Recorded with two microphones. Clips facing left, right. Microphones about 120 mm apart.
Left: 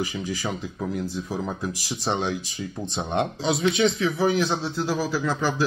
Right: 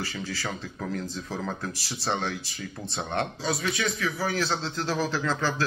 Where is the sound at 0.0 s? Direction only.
15° left (ahead or behind).